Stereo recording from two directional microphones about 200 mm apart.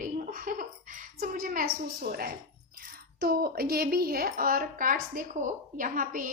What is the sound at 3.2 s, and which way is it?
A woman's voice, 50° right (ahead or behind).